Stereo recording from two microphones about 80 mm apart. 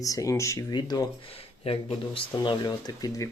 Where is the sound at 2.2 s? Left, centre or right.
Left.